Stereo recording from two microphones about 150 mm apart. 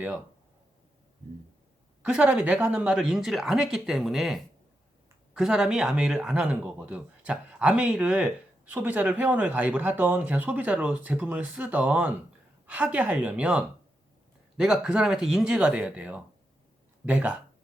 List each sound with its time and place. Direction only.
2.0 s speech: 10° right (ahead or behind)